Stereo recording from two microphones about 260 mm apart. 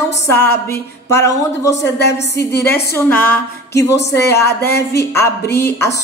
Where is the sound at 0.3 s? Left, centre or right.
Centre.